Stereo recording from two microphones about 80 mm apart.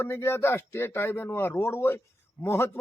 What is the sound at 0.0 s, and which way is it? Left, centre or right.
A man's voice, left.